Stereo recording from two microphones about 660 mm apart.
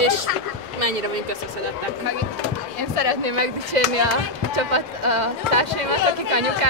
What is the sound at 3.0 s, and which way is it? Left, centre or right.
Speech, right.